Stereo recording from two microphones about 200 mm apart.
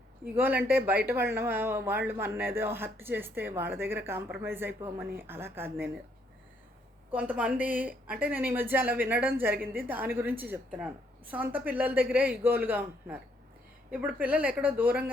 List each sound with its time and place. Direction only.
0.3 s speech: 10° right (ahead or behind)
7.1 s speech: 5° right (ahead or behind)